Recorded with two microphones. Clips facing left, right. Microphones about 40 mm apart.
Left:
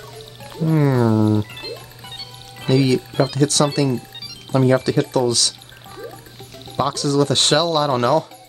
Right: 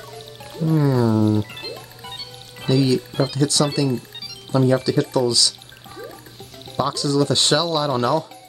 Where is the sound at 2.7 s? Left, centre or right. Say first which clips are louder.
Left 2 dB; left.